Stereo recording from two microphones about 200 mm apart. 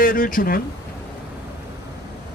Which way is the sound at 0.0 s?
45° left (ahead or behind).